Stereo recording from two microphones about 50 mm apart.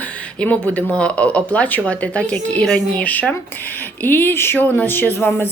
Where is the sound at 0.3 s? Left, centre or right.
Left.